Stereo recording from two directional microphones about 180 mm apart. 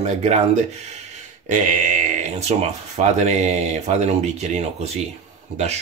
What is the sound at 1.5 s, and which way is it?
Speech, 45° right (ahead or behind).